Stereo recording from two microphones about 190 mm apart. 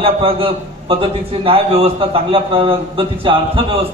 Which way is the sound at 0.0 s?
30° right (ahead or behind).